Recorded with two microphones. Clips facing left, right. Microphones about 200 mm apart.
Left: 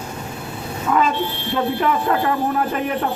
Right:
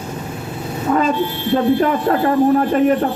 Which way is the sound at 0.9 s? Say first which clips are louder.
Right 3 dB; 40° right (ahead or behind).